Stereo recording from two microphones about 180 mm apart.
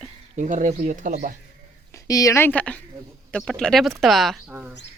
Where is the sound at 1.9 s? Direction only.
20° left (ahead or behind); by 4.7 s 5° right (ahead or behind).